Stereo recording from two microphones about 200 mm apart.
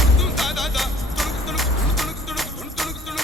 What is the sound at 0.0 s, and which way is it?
Music, centre (ahead or behind).